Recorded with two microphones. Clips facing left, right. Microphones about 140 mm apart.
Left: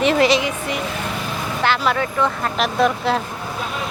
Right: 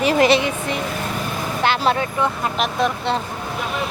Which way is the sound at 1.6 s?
20° right (ahead or behind).